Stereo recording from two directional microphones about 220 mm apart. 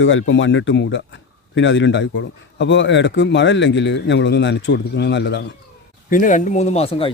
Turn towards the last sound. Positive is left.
turn(degrees=25)  # may be behind; listen again after turning